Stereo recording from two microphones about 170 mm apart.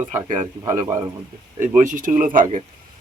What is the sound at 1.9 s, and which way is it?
Speech, 50° right (ahead or behind).